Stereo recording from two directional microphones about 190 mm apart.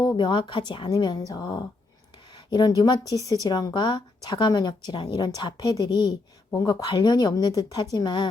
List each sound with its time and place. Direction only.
0.0 s speech: 25° left (ahead or behind)